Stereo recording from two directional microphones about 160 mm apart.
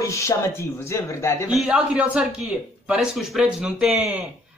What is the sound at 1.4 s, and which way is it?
A man's voice, 5° right (ahead or behind).